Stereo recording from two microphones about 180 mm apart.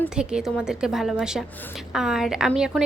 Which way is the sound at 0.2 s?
5° right (ahead or behind).